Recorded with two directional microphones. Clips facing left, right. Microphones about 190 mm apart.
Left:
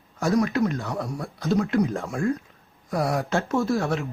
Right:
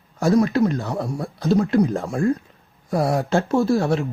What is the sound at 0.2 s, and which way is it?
Speech, 30° right (ahead or behind).